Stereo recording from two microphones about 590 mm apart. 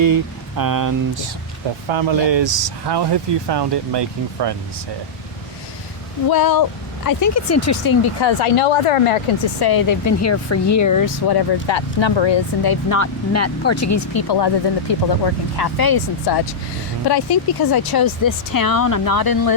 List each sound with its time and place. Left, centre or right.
0.0 s speech: right
1.9 s speech: right
6.3 s speech: left
8.2 s speech: left
9.6 s speech: left